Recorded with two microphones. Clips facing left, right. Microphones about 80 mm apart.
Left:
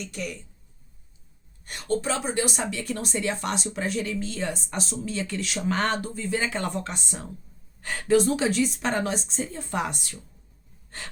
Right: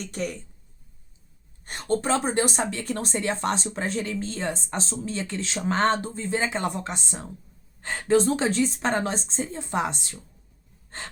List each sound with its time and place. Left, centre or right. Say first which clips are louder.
0.0 s speech: right 3 dB; right
1.6 s speech: right 2 dB; right